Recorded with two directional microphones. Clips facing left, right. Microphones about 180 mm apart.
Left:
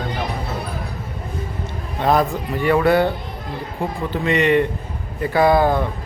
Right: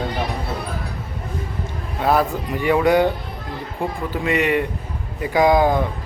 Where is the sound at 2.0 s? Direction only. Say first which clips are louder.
Left 1 dB; 5° right (ahead or behind).